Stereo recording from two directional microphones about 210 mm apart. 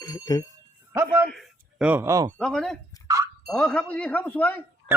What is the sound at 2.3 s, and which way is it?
Speech, centre (ahead or behind).